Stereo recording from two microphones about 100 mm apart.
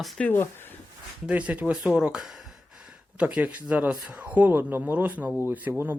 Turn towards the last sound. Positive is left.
turn(degrees=-20)  # may be behind; listen again after turning